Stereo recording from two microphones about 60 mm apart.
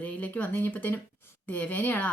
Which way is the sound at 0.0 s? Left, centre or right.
Left.